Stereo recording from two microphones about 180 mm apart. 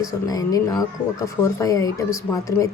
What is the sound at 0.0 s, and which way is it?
A woman's voice, 20° left (ahead or behind).